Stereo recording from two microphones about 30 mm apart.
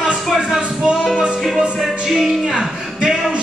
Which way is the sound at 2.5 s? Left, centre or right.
Right.